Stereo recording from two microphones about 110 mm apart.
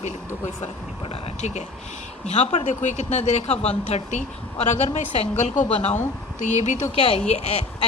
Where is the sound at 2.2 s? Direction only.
85° left.